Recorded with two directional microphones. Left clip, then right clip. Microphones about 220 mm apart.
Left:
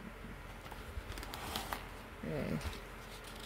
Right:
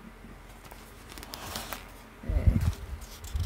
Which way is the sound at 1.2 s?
40° right (ahead or behind).